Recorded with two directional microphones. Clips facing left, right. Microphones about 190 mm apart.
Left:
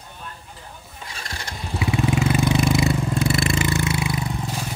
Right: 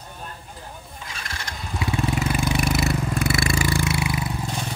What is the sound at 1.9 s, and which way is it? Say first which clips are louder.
Vehicle: left 4 dB; 20° left (ahead or behind).